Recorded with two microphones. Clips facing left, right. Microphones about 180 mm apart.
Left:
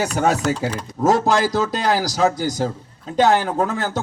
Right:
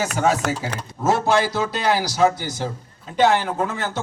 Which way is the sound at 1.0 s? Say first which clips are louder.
Left 2 dB; 40° left (ahead or behind).